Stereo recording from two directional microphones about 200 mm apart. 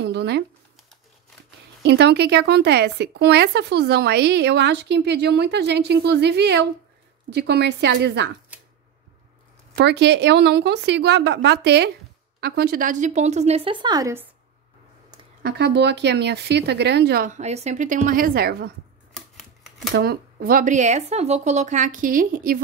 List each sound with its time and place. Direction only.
0.0 s speech: 55° right (ahead or behind)
1.8 s speech: 55° right (ahead or behind)
9.8 s speech: 55° right (ahead or behind); by 14.2 s 15° right (ahead or behind)
15.4 s speech: 55° right (ahead or behind)
19.9 s speech: 50° right (ahead or behind)